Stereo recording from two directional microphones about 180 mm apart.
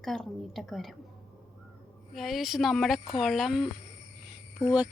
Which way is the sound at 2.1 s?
Centre (ahead or behind).